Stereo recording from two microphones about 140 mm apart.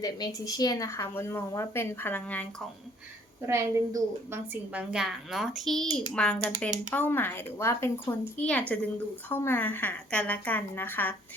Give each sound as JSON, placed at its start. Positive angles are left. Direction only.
{"t": 0.0, "sound": "a woman's voice", "side_deg": 25}
{"t": 3.4, "sound": "a woman's voice", "side_deg": -20}